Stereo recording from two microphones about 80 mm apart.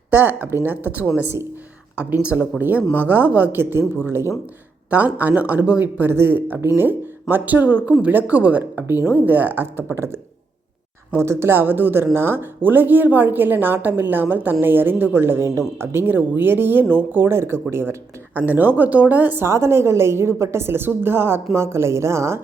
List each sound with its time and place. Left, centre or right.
0.1 s a woman's voice: right
4.9 s a woman's voice: right
11.2 s a woman's voice: right
19.5 s a woman's voice: right